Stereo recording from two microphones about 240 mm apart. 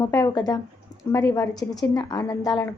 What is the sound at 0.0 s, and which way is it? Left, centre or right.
A woman's voice, centre.